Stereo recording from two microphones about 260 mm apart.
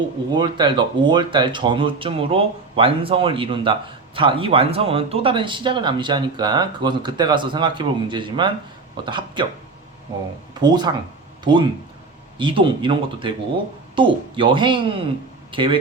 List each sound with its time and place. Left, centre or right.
0.3 s speech: centre
10.6 s speech: centre